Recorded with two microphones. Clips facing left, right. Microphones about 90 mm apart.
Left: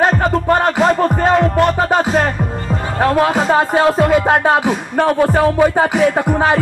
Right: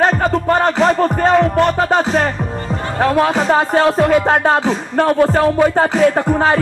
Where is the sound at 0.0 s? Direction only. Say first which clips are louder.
Even; 10° left (ahead or behind).